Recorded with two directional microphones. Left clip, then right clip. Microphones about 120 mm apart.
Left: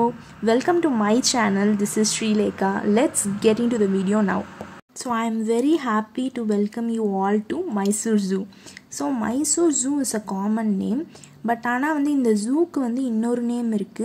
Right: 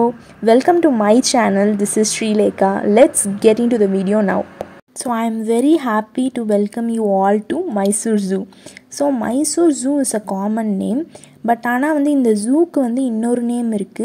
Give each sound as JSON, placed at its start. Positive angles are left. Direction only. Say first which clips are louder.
{"t": 0.0, "sound": "a woman's voice", "louder": "right 6 dB", "side_deg": -40}